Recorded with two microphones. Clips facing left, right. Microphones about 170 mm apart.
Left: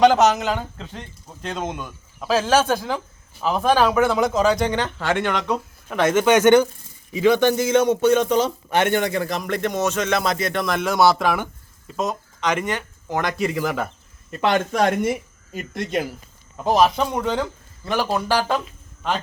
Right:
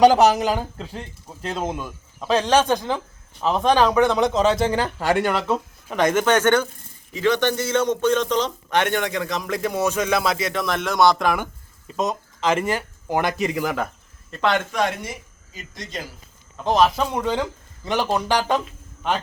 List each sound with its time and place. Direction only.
0.2 s a man's voice: 35° right (ahead or behind)
0.4 s speech: 10° right (ahead or behind)
6.1 s a man's voice: 10° left (ahead or behind)
12.4 s speech: 30° right (ahead or behind)
12.6 s speech: 10° right (ahead or behind)
14.3 s a man's voice: 15° left (ahead or behind)
14.7 s speech: 45° left (ahead or behind)
16.6 s speech: centre (ahead or behind)
17.2 s speech: 10° right (ahead or behind)
17.8 s speech: 5° left (ahead or behind)